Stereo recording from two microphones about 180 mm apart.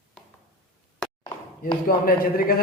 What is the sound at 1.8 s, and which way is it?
Speech, 55° left (ahead or behind).